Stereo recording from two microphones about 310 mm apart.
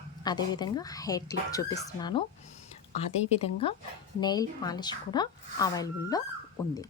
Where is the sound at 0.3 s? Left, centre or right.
Centre.